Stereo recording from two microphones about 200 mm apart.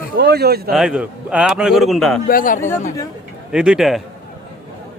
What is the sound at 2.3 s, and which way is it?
Speech, 45° left (ahead or behind).